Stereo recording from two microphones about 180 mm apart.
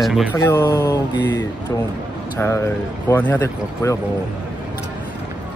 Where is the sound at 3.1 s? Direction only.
10° left (ahead or behind).